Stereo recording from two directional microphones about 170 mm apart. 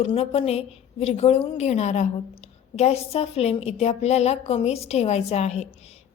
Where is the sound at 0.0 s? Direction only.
35° left (ahead or behind).